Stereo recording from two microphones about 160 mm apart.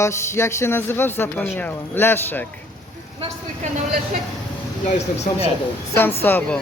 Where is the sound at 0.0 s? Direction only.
15° left (ahead or behind).